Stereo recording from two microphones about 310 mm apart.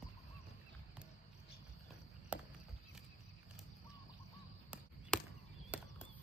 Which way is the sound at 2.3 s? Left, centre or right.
Centre.